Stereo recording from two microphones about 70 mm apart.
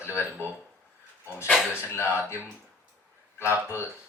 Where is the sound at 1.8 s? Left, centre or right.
Left.